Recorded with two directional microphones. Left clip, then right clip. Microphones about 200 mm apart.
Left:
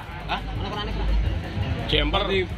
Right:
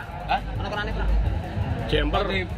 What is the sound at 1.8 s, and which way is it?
Speech, 30° right (ahead or behind).